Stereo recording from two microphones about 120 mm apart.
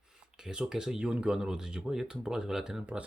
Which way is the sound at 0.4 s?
5° right (ahead or behind).